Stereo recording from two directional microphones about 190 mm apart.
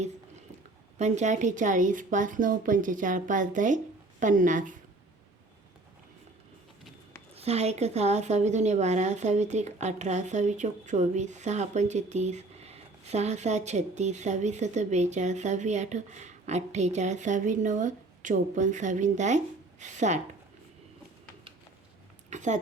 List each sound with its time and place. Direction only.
0.9 s speech: 35° right (ahead or behind)
7.3 s speech: 35° right (ahead or behind)
22.3 s a sound: 40° right (ahead or behind)